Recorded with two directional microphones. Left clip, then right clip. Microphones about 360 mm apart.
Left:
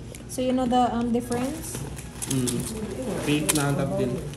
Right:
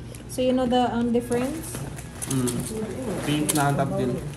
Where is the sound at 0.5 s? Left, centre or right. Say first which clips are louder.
Left 3 dB; centre.